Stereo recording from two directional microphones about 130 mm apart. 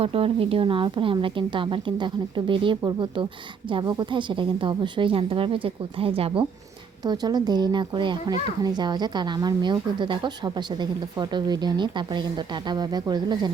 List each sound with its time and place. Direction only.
0.0 s a child's voice: 45° right (ahead or behind)
7.0 s a child's voice: 30° right (ahead or behind)